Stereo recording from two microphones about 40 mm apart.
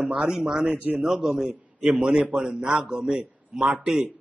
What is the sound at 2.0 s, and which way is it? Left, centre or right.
Speech, right.